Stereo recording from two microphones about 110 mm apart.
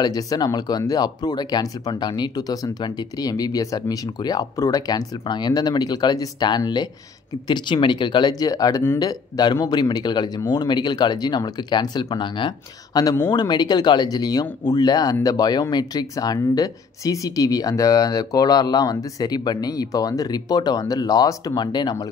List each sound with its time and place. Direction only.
0.0 s speech: 35° left (ahead or behind)